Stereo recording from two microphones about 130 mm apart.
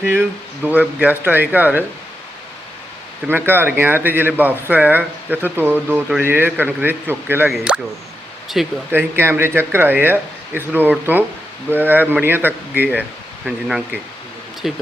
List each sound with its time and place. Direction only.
0.0 s speech: 15° right (ahead or behind)
3.2 s speech: 15° right (ahead or behind)
8.9 s speech: 15° right (ahead or behind)